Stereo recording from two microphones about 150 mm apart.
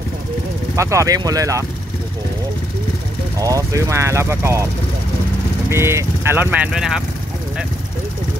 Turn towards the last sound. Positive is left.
turn(degrees=-5)  # may be behind; listen again after turning